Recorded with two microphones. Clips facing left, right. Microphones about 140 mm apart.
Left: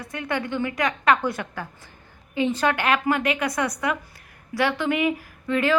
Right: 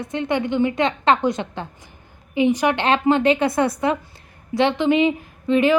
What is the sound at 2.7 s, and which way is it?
A woman's voice, 25° right (ahead or behind).